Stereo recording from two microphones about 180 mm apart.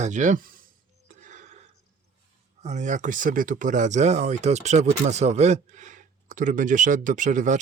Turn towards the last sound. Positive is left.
turn(degrees=-45)  # may be behind; listen again after turning